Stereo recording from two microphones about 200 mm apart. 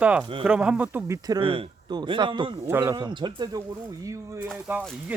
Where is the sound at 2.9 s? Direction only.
20° right (ahead or behind).